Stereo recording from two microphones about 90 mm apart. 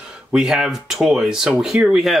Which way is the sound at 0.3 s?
5° right (ahead or behind).